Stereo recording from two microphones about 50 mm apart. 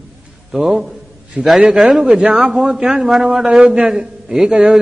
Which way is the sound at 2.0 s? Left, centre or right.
Centre.